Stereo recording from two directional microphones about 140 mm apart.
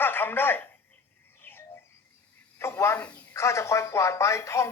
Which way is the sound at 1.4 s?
15° left (ahead or behind).